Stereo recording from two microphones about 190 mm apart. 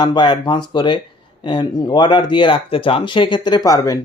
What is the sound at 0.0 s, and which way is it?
Speech, 25° left (ahead or behind).